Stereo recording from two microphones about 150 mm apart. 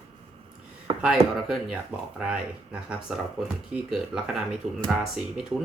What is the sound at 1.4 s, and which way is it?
Speech, 5° right (ahead or behind).